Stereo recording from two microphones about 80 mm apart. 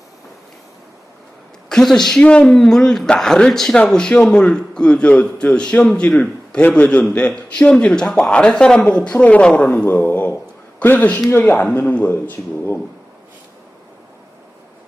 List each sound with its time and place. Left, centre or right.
1.7 s a woman's voice: centre; by 12.8 s left